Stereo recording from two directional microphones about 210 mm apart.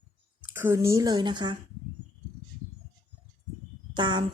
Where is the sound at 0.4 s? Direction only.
10° right (ahead or behind).